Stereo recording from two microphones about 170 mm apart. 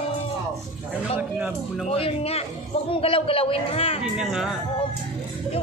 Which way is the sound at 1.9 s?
35° left (ahead or behind).